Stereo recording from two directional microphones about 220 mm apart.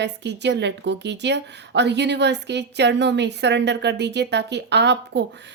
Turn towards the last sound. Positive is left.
turn(degrees=-50)  # may be behind; listen again after turning